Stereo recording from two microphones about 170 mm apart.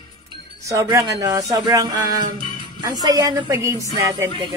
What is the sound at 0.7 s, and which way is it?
Speech, 15° right (ahead or behind).